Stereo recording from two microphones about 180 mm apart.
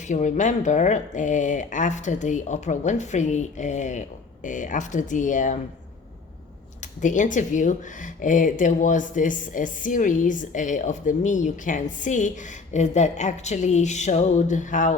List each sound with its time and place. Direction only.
0.1 s speech: 45° left (ahead or behind)
7.0 s speech: 45° left (ahead or behind)